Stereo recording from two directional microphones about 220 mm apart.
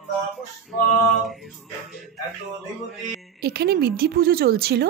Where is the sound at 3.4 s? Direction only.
45° right (ahead or behind).